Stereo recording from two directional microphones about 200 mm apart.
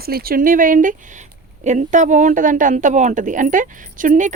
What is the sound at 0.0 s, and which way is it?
Speech, 50° right (ahead or behind).